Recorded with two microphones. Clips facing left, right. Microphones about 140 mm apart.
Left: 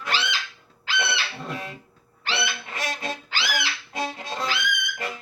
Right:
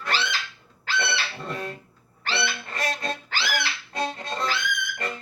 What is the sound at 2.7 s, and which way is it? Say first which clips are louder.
Music: right 1 dB; centre (ahead or behind).